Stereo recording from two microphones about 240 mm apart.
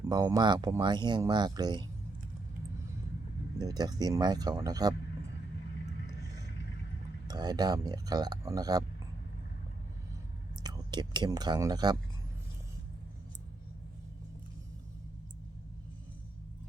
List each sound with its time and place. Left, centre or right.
0.1 s speech: centre
3.6 s speech: centre
7.3 s speech: centre
10.6 s speech: centre